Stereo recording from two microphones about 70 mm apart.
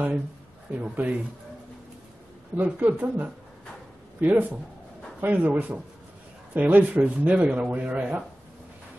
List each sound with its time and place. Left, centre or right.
0.7 s speech: right
2.5 s speech: right